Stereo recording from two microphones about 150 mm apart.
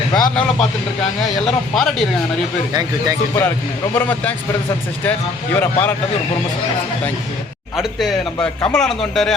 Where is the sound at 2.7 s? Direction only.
25° right (ahead or behind).